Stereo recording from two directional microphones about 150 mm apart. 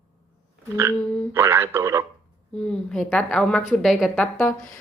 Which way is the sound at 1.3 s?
15° right (ahead or behind).